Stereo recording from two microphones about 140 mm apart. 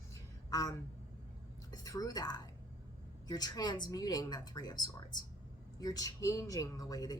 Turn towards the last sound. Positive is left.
turn(degrees=25)  # may be behind; listen again after turning